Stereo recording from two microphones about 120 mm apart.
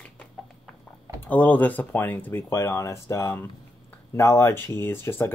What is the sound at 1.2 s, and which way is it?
Speech, 15° left (ahead or behind).